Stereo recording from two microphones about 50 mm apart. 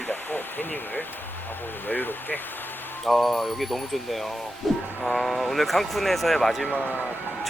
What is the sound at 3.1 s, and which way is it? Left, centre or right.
Speech, centre.